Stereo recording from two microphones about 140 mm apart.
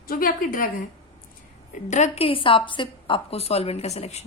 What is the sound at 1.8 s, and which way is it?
A woman's voice, 55° left (ahead or behind).